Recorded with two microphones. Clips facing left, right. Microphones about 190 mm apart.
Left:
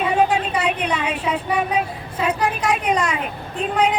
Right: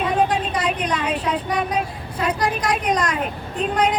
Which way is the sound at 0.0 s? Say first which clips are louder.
Left 1 dB; 5° left (ahead or behind).